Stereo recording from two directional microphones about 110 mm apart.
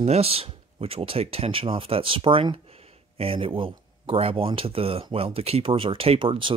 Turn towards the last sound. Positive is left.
turn(degrees=-50)  # may be behind; listen again after turning